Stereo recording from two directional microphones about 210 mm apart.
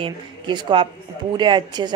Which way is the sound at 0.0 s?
20° right (ahead or behind).